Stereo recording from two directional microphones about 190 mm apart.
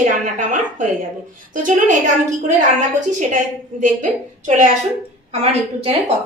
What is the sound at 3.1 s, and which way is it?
A woman's voice, 40° right (ahead or behind).